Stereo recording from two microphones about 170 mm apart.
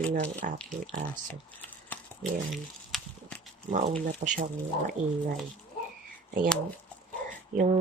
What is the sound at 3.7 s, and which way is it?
Speech, 50° right (ahead or behind).